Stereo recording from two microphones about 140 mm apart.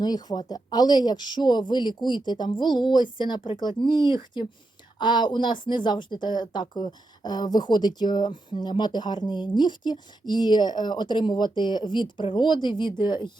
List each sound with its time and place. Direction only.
0.0 s speech: 30° left (ahead or behind)